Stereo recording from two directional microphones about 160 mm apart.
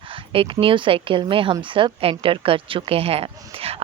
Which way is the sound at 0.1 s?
35° right (ahead or behind).